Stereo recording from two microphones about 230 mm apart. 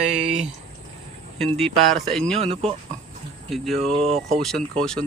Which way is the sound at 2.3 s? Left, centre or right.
Right.